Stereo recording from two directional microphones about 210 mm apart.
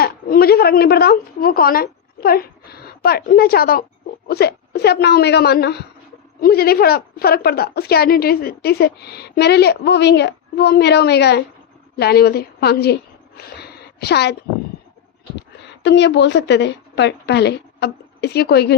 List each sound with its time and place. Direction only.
0.0 s a woman's voice: 45° left (ahead or behind)
15.8 s a woman's voice: 55° left (ahead or behind)